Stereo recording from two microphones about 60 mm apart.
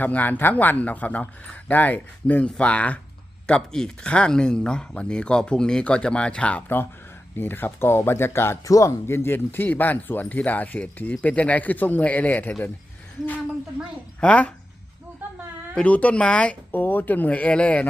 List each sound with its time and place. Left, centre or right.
0.0 s speech: left
3.4 s speech: centre
7.3 s speech: left
8.6 s speech: left
14.2 s speech: left
15.7 s speech: left
16.7 s speech: left